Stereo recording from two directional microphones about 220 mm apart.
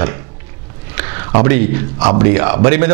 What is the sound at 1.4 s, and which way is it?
A man's voice, 10° right (ahead or behind).